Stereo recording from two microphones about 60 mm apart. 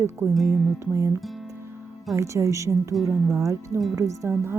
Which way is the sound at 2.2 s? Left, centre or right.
Right.